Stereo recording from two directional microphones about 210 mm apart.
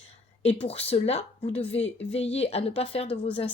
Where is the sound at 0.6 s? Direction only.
30° left (ahead or behind).